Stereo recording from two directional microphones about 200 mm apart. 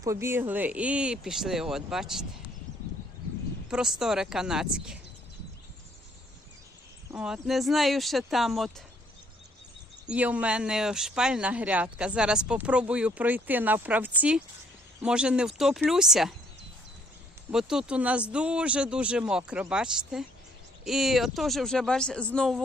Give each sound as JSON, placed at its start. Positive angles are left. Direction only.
{"t": 0.0, "sound": "speech", "side_deg": -15}
{"t": 3.7, "sound": "speech", "side_deg": -5}
{"t": 7.1, "sound": "speech", "side_deg": -5}
{"t": 10.1, "sound": "speech", "side_deg": -5}
{"t": 17.5, "sound": "speech", "side_deg": 0}